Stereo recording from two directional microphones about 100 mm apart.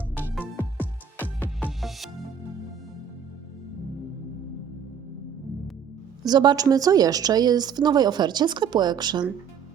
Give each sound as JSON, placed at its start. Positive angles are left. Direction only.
{"t": 0.5, "sound": "music", "side_deg": 20}
{"t": 1.8, "sound": "music", "side_deg": 0}
{"t": 6.2, "sound": "a woman's voice", "side_deg": -45}